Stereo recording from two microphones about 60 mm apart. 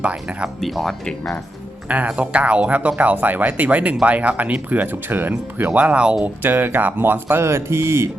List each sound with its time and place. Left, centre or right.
0.0 s speech: centre
0.6 s speech: centre
1.9 s speech: right
6.4 s speech: right